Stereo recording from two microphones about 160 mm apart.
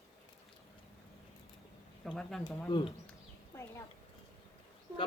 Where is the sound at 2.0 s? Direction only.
Centre (ahead or behind).